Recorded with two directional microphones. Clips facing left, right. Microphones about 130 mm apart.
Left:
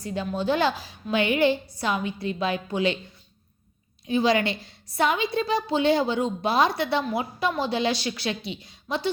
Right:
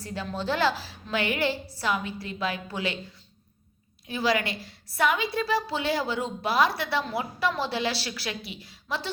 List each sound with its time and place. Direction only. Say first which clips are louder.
0.0 s a woman's voice: left 5 dB; 20° left (ahead or behind)
4.0 s a woman's voice: left 4 dB; 20° left (ahead or behind)